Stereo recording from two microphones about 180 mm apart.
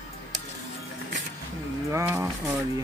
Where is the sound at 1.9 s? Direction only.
15° right (ahead or behind).